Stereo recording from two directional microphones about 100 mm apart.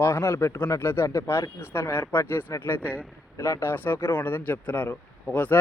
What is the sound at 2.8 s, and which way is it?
Speech, 15° right (ahead or behind).